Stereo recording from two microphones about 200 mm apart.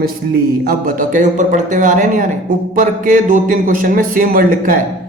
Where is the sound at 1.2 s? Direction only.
40° right (ahead or behind).